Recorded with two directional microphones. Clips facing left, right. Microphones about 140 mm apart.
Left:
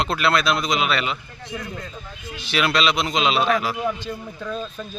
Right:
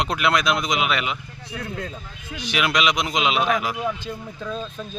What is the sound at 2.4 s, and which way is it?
Speech, 15° right (ahead or behind).